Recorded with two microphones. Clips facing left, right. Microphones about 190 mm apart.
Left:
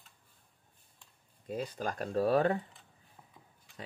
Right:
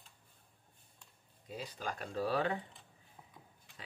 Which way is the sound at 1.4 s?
50° left (ahead or behind).